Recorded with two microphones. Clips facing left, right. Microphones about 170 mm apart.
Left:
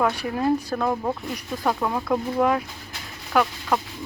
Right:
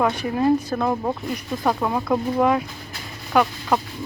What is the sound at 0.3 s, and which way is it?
Speech, 10° right (ahead or behind).